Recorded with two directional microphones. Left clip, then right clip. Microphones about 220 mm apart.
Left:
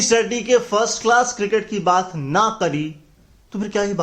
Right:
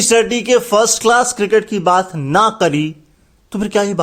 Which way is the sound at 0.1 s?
45° right (ahead or behind).